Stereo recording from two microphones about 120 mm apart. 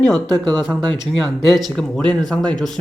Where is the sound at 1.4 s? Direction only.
Centre (ahead or behind).